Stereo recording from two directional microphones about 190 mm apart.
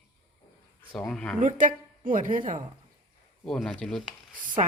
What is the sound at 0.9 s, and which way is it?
Speech, 5° left (ahead or behind).